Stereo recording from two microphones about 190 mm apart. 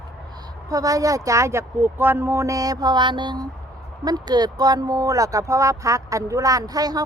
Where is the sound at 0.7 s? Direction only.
20° right (ahead or behind).